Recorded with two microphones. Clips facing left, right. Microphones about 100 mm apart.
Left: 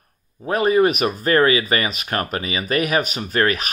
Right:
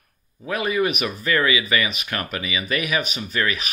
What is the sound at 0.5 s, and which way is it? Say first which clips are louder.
Speech: left 6 dB; 40° left (ahead or behind).